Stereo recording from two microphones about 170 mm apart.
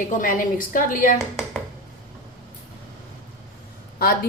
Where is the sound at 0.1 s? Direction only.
50° left (ahead or behind).